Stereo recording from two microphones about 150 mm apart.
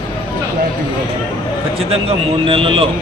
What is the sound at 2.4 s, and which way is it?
Speech, 35° right (ahead or behind).